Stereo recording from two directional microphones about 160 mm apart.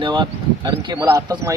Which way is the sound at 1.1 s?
20° right (ahead or behind).